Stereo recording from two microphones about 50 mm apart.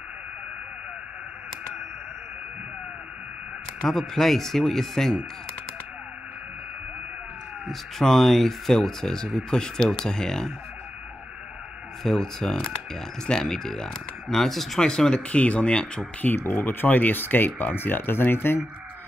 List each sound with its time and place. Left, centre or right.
3.9 s speech: centre
7.6 s speech: centre
12.0 s speech: centre
14.9 s speech: centre
16.3 s speech: left